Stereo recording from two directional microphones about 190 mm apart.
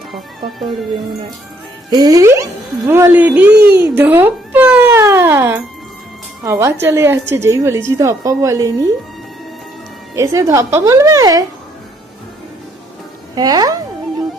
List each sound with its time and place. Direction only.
1.9 s speech: 20° right (ahead or behind)
10.2 s speech: 15° right (ahead or behind)
13.3 s a woman's voice: 20° right (ahead or behind)